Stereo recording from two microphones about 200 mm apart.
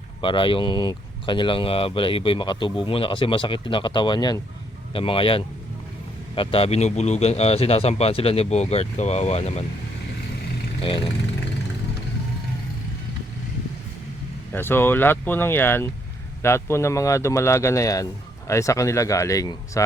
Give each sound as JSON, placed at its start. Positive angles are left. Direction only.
{"t": 0.2, "sound": "a man's voice", "side_deg": 25}
{"t": 10.8, "sound": "speech", "side_deg": 25}
{"t": 14.5, "sound": "speech", "side_deg": 10}